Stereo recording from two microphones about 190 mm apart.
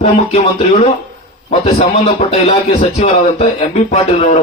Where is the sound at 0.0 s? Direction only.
35° left (ahead or behind).